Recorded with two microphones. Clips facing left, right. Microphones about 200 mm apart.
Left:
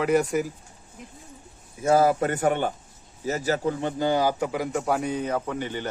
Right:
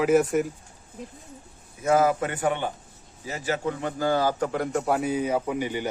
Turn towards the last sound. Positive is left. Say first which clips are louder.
# right 2 dB
turn(degrees=-10)  # may be behind; listen again after turning